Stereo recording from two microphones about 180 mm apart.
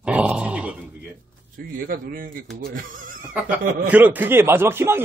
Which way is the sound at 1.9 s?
50° right (ahead or behind).